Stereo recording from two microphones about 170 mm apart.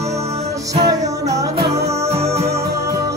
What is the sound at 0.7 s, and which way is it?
Music, 20° right (ahead or behind).